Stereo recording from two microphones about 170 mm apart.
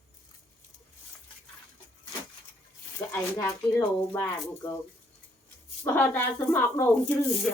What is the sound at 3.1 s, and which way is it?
Speech, 15° left (ahead or behind).